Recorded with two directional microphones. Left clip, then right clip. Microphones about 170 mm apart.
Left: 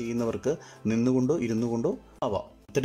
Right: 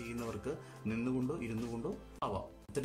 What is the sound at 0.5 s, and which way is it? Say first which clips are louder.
Speech: left 12 dB; 45° left (ahead or behind).